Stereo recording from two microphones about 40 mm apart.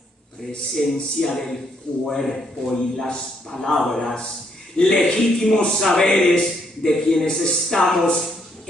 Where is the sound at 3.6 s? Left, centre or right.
Centre.